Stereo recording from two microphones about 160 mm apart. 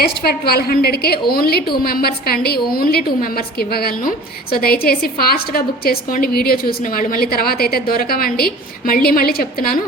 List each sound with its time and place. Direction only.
0.0 s a woman's voice: 75° left (ahead or behind)